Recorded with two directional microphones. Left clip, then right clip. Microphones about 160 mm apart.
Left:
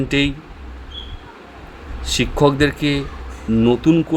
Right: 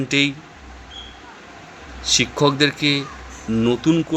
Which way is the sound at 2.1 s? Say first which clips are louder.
Left 2 dB; 20° left (ahead or behind).